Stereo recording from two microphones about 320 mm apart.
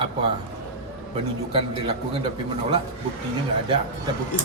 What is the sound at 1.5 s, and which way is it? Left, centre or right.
Speech, centre.